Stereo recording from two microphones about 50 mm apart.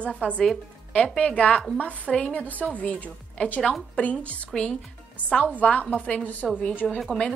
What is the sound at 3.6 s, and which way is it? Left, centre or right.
Speech, centre.